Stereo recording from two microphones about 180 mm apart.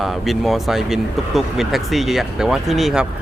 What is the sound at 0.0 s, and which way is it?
Speech, centre (ahead or behind).